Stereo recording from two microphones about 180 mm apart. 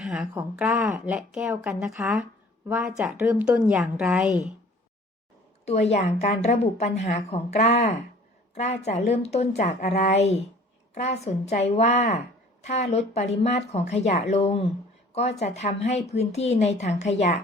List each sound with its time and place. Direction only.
0.0 s a woman's voice: 5° right (ahead or behind)
5.6 s a woman's voice: 35° left (ahead or behind)